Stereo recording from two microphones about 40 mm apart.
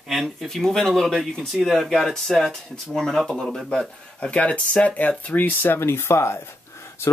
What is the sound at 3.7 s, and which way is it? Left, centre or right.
Speech, left.